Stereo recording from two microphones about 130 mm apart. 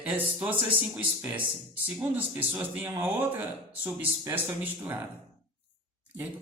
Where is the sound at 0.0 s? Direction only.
10° right (ahead or behind).